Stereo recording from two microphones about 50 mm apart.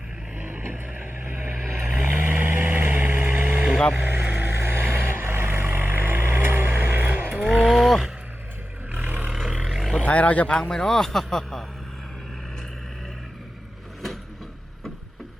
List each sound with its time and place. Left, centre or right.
0.4 s a sound: right
1.8 s vehicle: right
2.0 s vehicle: right
3.9 s speech: right
4.2 s vehicle: right
4.4 s vehicle: right
7.6 s wild animals: centre
8.9 s roar: right
9.3 s vehicle: centre
9.7 s roaring cats: centre
10.1 s speech: left
10.5 s speech: centre